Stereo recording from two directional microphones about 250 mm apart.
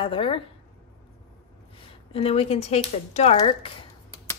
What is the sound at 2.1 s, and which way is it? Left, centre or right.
Speech, left.